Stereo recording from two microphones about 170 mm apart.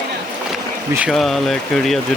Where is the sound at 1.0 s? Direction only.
Centre (ahead or behind).